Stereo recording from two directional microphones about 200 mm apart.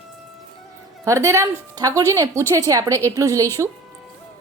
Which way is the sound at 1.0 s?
15° right (ahead or behind).